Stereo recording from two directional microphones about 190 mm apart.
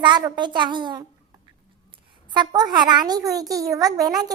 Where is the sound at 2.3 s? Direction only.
20° right (ahead or behind).